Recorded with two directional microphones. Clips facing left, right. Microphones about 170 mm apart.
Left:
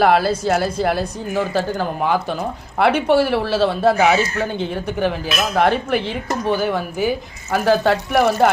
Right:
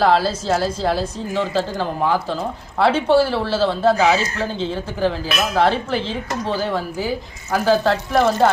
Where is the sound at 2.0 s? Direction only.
65° left (ahead or behind).